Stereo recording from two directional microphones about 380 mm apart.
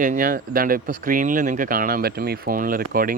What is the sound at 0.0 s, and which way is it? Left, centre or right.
Speech, right.